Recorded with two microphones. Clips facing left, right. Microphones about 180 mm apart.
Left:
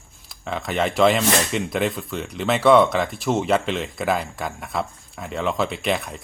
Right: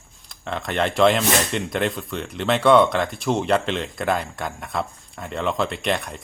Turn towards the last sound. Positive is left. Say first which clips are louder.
# even
turn(degrees=0)  # may be behind; listen again after turning